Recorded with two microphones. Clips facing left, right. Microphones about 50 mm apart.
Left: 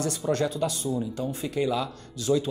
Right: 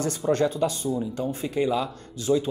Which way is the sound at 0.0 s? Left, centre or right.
Right.